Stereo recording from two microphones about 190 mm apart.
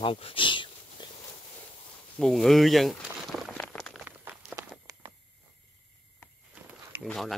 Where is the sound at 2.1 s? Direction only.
Centre (ahead or behind).